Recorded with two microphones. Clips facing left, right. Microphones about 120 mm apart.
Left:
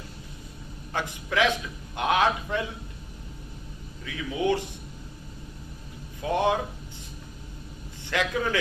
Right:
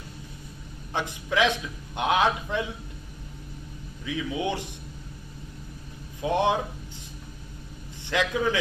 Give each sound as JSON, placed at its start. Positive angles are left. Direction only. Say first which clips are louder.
{"t": 0.9, "sound": "a woman's voice", "louder": "right 1 dB", "side_deg": -20}
{"t": 4.0, "sound": "speech", "louder": "left 1 dB", "side_deg": -15}
{"t": 6.2, "sound": "a woman's voice", "louder": "right 1 dB", "side_deg": -20}
{"t": 8.0, "sound": "a woman's voice", "louder": "right 2 dB", "side_deg": -20}